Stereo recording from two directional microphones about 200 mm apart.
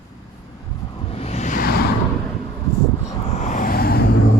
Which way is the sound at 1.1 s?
30° left (ahead or behind).